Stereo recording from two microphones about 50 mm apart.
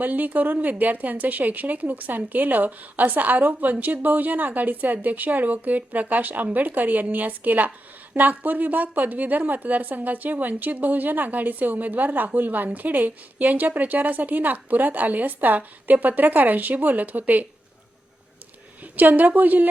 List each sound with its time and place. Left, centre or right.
0.0 s speech: right
18.8 s a woman's voice: right